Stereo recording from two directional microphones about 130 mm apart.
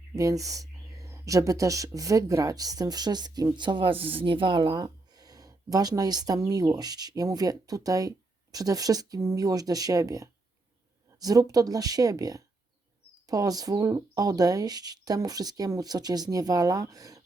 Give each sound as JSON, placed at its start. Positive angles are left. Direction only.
{"t": 0.2, "sound": "speech", "side_deg": -25}